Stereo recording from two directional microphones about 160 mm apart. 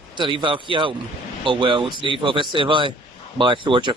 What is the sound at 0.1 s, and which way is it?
Speech, 30° right (ahead or behind).